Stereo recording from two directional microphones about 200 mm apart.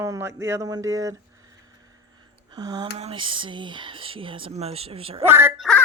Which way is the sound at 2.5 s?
20° right (ahead or behind).